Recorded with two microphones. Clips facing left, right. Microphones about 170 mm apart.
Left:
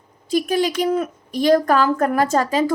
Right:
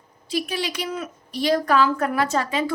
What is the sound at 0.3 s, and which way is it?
A woman's voice, 45° left (ahead or behind).